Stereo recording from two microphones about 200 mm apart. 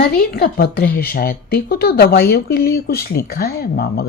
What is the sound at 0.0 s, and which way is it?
Speech, 50° left (ahead or behind).